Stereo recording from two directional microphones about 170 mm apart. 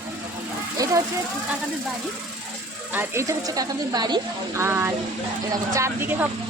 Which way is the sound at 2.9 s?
15° right (ahead or behind).